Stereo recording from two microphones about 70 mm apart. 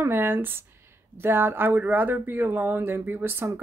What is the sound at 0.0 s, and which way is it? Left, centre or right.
Speech, right.